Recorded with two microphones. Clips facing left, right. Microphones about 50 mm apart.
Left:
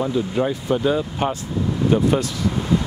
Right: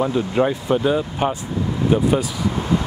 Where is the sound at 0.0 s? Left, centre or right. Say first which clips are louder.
Right 2 dB; right.